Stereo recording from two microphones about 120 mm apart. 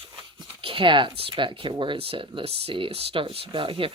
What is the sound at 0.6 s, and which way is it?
Speech, 45° right (ahead or behind).